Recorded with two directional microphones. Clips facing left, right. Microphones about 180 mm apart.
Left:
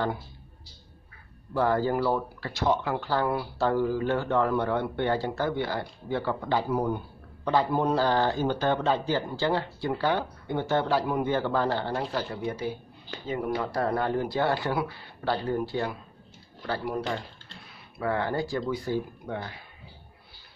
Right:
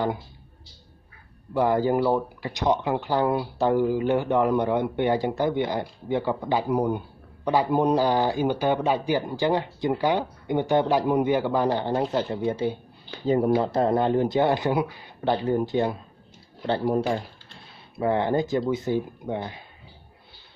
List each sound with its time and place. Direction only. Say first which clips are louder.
1.5 s speech: right 3 dB; 15° right (ahead or behind)